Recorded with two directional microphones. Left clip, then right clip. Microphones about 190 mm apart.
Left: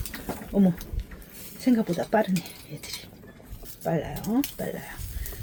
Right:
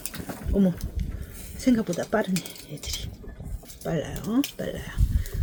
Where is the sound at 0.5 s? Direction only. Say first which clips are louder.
Even; 35° right (ahead or behind).